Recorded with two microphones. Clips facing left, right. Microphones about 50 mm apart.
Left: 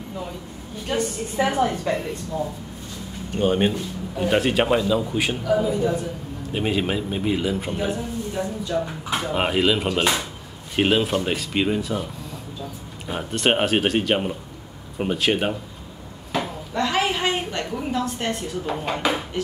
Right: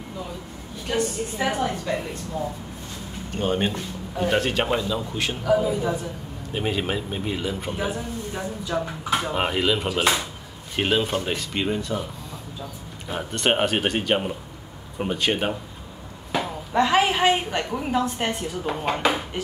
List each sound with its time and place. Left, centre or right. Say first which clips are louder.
0.9 s a woman's voice: left 1 dB; left
1.5 s speech: left 3 dB; centre
5.4 s a man's voice: right 1 dB; centre
6.5 s speech: left 2 dB; centre
8.7 s a man's voice: left 1 dB; centre
9.1 s speech: left 1 dB; centre
13.1 s speech: left 2 dB; centre
16.3 s a woman's voice: even; centre